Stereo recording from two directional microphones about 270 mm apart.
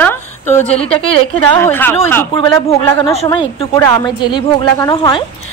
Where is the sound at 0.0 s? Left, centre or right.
Centre.